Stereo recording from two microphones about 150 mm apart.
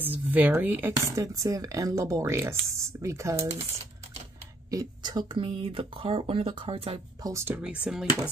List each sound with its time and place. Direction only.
0.0 s speech: 10° right (ahead or behind)
4.6 s speech: 25° right (ahead or behind)
7.2 s speech: 15° right (ahead or behind)